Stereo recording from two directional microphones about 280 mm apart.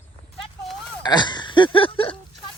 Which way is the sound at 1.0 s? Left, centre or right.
Centre.